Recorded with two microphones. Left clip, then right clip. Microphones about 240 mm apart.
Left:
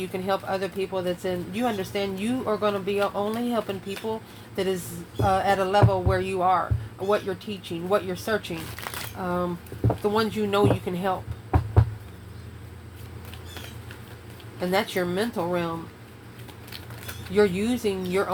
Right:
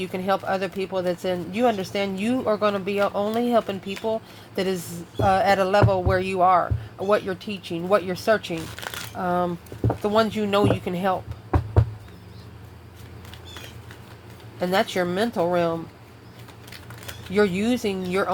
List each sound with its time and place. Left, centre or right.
0.1 s a woman's voice: right
14.6 s speech: right
17.3 s speech: right